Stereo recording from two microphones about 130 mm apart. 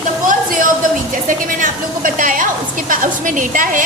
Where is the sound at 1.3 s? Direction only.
90° right.